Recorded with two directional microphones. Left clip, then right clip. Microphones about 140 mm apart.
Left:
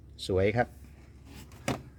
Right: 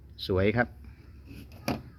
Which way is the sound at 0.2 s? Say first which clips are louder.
Right 1 dB; 15° left (ahead or behind).